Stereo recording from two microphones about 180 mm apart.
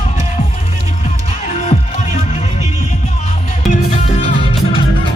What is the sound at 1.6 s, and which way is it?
Music, 40° left (ahead or behind).